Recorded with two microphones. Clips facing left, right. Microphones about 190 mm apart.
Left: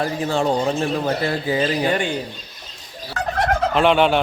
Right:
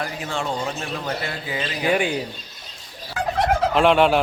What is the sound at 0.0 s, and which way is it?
Speech, 35° left (ahead or behind).